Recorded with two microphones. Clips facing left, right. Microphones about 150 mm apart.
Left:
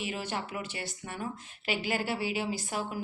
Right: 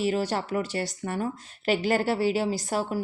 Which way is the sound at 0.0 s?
40° right (ahead or behind).